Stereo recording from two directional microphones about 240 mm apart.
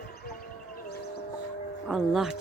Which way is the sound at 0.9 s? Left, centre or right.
Left.